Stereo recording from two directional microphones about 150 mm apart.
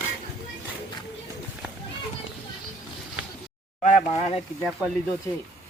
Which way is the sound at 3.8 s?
50° left (ahead or behind).